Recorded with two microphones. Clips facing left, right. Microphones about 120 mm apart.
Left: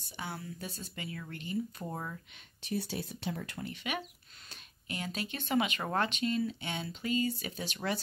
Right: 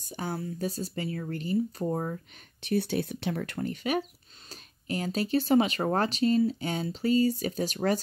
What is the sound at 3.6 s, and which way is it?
Speech, 45° right (ahead or behind).